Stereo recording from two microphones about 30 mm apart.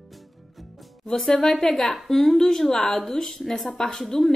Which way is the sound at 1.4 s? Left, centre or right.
Centre.